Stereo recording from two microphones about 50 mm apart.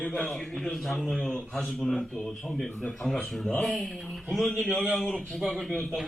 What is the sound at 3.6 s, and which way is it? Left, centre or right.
A man's voice, centre.